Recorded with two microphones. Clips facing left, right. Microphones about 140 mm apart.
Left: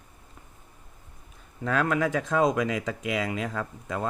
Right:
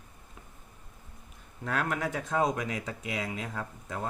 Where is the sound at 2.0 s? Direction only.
90° left.